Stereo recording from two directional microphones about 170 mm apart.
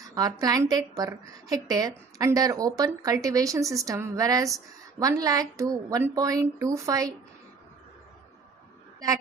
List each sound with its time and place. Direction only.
0.0 s a woman's voice: 20° right (ahead or behind)